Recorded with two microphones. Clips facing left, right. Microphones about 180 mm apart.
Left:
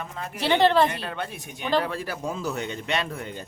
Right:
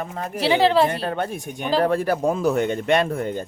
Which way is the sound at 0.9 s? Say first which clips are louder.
Right 7 dB; 45° right (ahead or behind).